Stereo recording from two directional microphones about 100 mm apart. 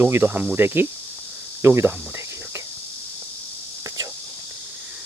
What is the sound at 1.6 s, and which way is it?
Cricket, 25° right (ahead or behind).